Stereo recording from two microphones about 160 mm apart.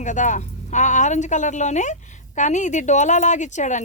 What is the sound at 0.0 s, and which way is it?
A woman's voice, 50° left (ahead or behind).